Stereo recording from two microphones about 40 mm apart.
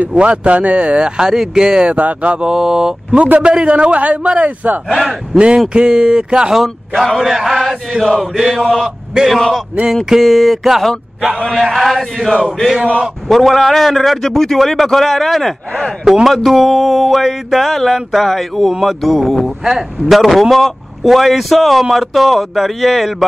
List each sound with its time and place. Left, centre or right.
0.2 s speech: right
2.0 s a man's voice: right
2.4 s speech: centre
3.3 s a man's voice: right
4.8 s speech: centre
5.7 s speech: right
6.5 s a man's voice: centre
7.2 s chant: centre
8.0 s speech: centre
8.4 s a man's voice: centre
9.3 s speech: centre
13.3 s speech: centre